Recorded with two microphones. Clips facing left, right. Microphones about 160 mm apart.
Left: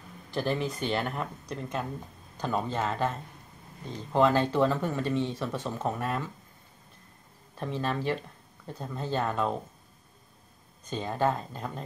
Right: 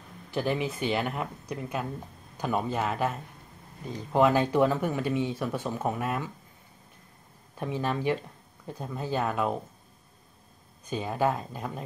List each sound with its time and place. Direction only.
0.3 s speech: 10° right (ahead or behind)
7.5 s speech: 10° right (ahead or behind)
10.9 s speech: 10° right (ahead or behind)